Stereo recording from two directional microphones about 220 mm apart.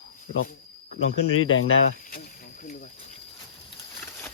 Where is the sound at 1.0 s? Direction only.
65° left (ahead or behind).